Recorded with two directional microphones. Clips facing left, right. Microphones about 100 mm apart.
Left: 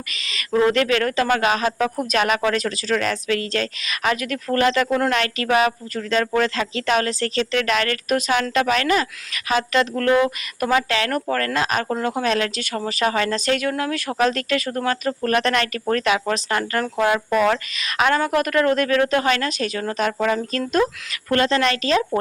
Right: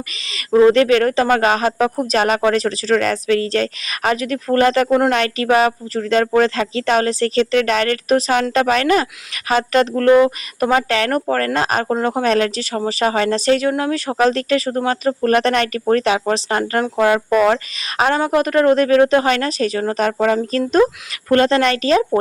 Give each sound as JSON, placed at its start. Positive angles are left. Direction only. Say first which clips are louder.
{"t": 0.7, "sound": "speech", "louder": "right 6 dB", "side_deg": -35}
{"t": 4.9, "sound": "speech", "louder": "right 5 dB", "side_deg": -30}